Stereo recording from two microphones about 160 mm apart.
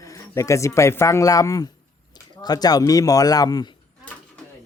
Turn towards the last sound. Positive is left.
turn(degrees=25)  # may be behind; listen again after turning